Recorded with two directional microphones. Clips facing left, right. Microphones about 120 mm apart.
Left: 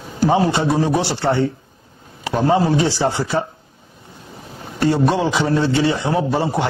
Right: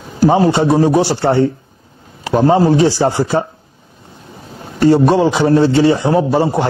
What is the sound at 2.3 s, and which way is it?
A man's voice, 30° right (ahead or behind).